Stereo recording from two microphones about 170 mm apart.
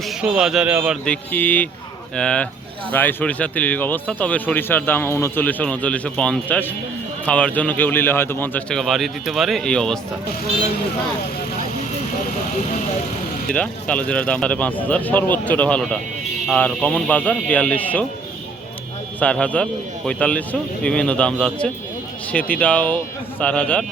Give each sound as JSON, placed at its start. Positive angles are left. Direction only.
{"t": 0.0, "sound": "a man's voice", "side_deg": -5}
{"t": 1.0, "sound": "a man's voice", "side_deg": 10}
{"t": 13.5, "sound": "speech", "side_deg": 5}
{"t": 19.2, "sound": "speech", "side_deg": 5}